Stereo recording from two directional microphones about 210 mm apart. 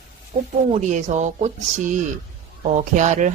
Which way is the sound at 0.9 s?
35° right (ahead or behind).